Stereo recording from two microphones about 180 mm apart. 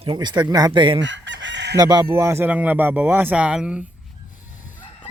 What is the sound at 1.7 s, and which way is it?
Speech, 20° right (ahead or behind).